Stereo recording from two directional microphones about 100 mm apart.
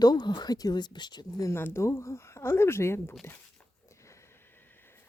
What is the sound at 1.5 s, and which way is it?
Speech, 25° left (ahead or behind).